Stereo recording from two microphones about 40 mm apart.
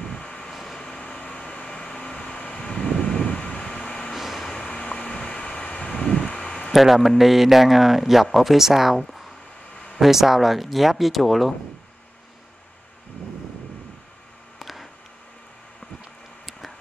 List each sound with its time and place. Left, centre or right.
0.0 s vehicle: left
1.0 s vehicle: left
3.3 s vehicle: left
3.6 s vehicle: centre
4.2 s vehicle: centre
4.5 s vehicle: left
6.7 s speech: centre
14.6 s a sound: centre